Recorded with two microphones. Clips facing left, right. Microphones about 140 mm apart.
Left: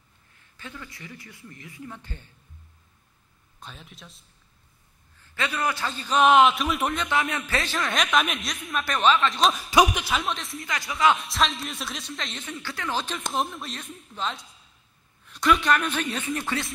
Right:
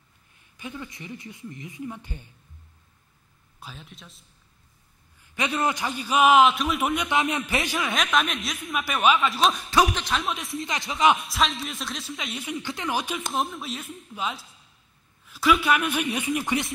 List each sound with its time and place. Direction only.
0.4 s speech: 15° right (ahead or behind)
3.5 s a man's voice: centre (ahead or behind)
5.2 s a man's voice: 15° right (ahead or behind); by 6.9 s centre (ahead or behind)
6.9 s a man's voice: 15° right (ahead or behind)
7.9 s a man's voice: centre (ahead or behind)
9.7 s a man's voice: 10° left (ahead or behind)
10.6 s speech: 25° right (ahead or behind)
11.1 s a man's voice: centre (ahead or behind); by 16.7 s 15° right (ahead or behind)